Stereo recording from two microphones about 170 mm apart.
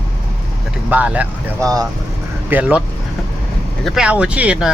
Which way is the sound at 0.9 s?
10° right (ahead or behind).